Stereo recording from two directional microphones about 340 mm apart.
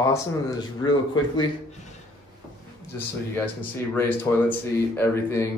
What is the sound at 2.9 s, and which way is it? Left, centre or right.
Speech, centre.